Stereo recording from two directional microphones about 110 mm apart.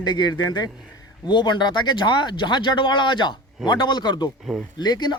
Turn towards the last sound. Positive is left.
turn(degrees=40)  # may be behind; listen again after turning